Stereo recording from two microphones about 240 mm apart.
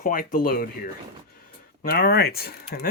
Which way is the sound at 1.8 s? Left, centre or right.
Left.